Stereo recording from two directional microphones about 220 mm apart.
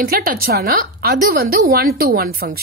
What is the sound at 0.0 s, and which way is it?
A woman's voice, 40° right (ahead or behind).